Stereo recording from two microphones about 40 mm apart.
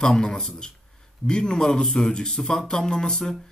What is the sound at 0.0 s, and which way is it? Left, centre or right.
Speech, centre.